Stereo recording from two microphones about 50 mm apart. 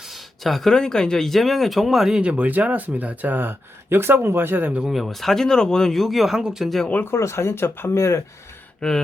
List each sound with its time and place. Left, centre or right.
0.4 s speech: centre
2.2 s speech: right
4.9 s speech: centre
7.2 s speech: left
7.9 s speech: left
8.8 s speech: centre